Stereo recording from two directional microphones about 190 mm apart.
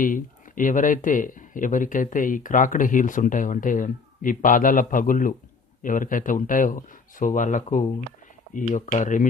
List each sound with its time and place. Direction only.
0.0 s speech: 45° left (ahead or behind)